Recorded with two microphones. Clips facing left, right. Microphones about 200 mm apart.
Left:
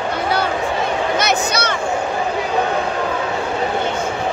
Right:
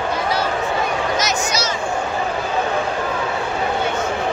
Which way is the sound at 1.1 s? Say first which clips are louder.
Left 3 dB; 60° left (ahead or behind).